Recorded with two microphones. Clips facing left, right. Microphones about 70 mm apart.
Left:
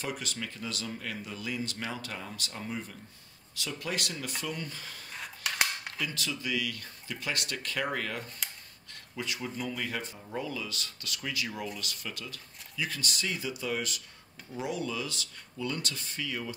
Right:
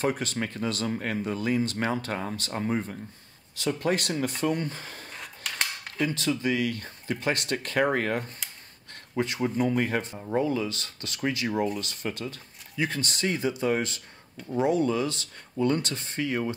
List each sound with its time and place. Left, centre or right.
0.0 s speech: right
5.1 s cap gun: centre
6.0 s speech: right